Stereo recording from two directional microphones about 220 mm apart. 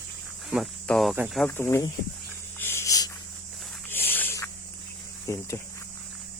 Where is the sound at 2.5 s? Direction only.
10° left (ahead or behind).